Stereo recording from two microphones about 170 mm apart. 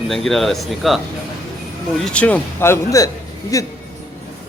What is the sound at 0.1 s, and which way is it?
Speech, centre (ahead or behind).